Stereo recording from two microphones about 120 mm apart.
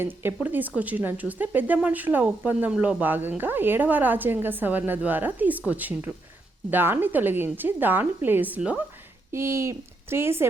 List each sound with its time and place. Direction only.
0.0 s speech: 20° right (ahead or behind)
9.3 s speech: 25° right (ahead or behind)